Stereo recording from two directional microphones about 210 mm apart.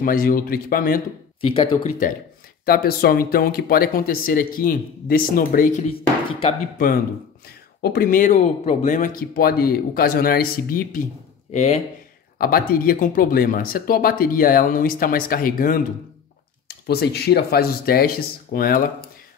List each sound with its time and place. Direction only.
0.0 s speech: 45° left (ahead or behind)
1.4 s speech: 25° left (ahead or behind)
1.8 s speech: 40° left (ahead or behind)
7.4 s speech: 45° left (ahead or behind)
11.5 s speech: 30° left (ahead or behind)
12.4 s speech: 45° left (ahead or behind)